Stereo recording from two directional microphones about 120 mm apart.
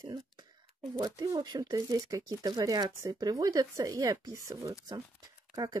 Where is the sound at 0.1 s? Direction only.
35° right (ahead or behind).